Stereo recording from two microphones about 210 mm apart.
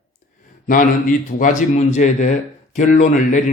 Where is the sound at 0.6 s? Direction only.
40° left (ahead or behind).